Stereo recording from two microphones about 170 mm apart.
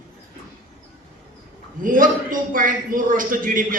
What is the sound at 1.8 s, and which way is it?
A man's voice, 55° right (ahead or behind).